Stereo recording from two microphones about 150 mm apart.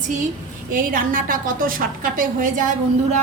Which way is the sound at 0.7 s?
65° right (ahead or behind).